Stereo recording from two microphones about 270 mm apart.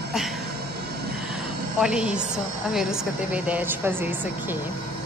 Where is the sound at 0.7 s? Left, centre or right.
Right.